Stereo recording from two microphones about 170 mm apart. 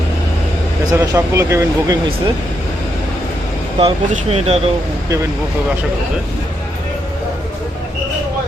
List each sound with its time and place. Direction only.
0.9 s speech: 15° right (ahead or behind)
3.8 s speech: 35° right (ahead or behind)